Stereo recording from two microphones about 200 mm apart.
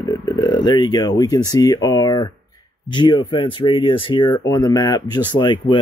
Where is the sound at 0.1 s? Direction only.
20° left (ahead or behind).